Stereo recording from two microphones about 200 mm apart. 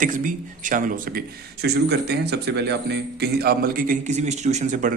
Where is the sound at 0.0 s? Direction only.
40° right (ahead or behind).